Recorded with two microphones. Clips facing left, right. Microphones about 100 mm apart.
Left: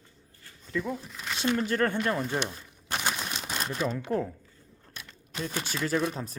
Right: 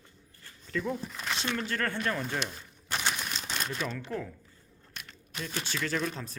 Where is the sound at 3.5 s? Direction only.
30° left (ahead or behind).